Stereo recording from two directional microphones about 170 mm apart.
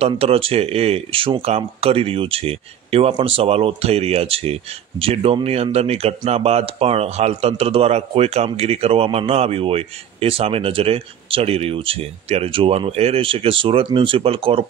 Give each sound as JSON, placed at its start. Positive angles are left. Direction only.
{"t": 0.0, "sound": "speech", "side_deg": -35}